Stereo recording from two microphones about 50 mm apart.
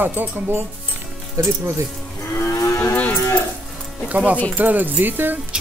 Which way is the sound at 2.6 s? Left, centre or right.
Left.